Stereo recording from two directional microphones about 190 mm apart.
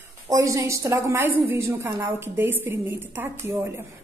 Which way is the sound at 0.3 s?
15° right (ahead or behind).